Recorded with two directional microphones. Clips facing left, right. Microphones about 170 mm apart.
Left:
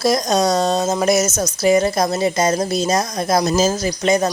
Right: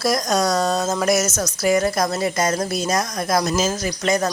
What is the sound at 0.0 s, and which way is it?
A woman's voice, 25° left (ahead or behind).